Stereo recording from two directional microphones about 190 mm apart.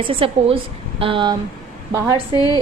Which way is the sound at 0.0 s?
30° right (ahead or behind).